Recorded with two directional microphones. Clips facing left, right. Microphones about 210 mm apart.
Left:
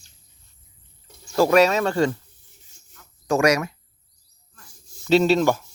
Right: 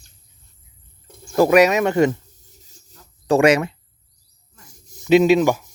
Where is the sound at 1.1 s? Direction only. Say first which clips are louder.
Right 7 dB; 50° right (ahead or behind).